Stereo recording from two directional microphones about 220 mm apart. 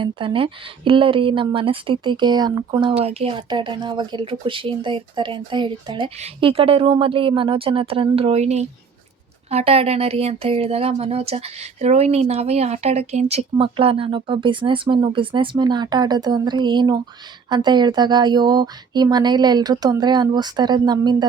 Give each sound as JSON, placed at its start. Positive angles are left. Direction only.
{"t": 0.0, "sound": "speech", "side_deg": -20}